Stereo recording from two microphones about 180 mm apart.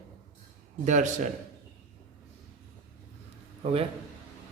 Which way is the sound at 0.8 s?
45° right (ahead or behind).